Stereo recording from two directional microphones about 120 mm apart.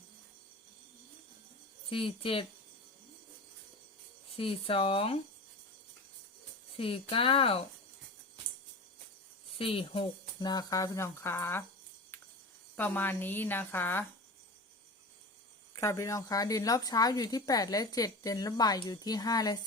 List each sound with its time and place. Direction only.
1.9 s speech: 50° left (ahead or behind)
4.4 s speech: 50° left (ahead or behind)
6.7 s speech: 50° left (ahead or behind)
9.6 s speech: 50° left (ahead or behind)
10.4 s speech: 35° left (ahead or behind)
12.7 s speech: 15° left (ahead or behind)
15.7 s a woman's voice: 25° left (ahead or behind)